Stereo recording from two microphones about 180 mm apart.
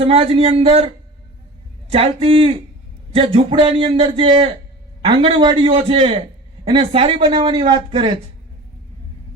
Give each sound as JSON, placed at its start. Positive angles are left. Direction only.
{"t": 0.1, "sound": "speech", "side_deg": -35}
{"t": 1.9, "sound": "speech", "side_deg": -30}